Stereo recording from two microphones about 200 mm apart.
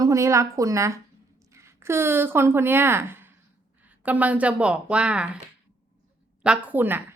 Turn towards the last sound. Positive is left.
turn(degrees=-10)  # may be behind; listen again after turning